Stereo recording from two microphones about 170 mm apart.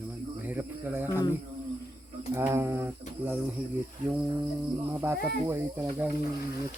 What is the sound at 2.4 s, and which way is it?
Speech, 15° right (ahead or behind).